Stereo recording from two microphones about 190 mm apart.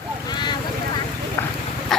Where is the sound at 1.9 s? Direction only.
Centre (ahead or behind).